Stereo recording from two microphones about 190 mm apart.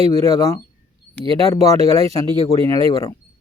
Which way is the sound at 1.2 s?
30° right (ahead or behind).